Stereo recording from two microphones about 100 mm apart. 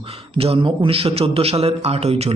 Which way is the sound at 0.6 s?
65° right (ahead or behind).